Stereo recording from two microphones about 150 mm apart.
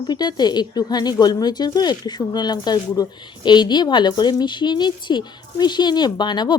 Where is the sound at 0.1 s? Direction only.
30° left (ahead or behind).